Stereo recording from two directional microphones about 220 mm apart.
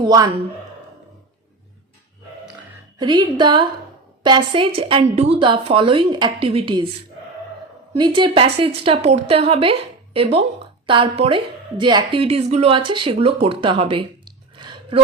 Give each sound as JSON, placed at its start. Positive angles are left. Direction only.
{"t": 0.0, "sound": "speech", "side_deg": -20}
{"t": 3.0, "sound": "a woman's voice", "side_deg": -20}
{"t": 7.9, "sound": "a woman's voice", "side_deg": -20}